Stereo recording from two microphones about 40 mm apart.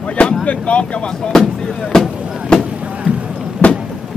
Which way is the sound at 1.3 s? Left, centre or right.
Centre.